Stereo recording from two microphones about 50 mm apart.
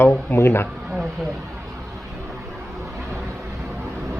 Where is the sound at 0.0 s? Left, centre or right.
Left.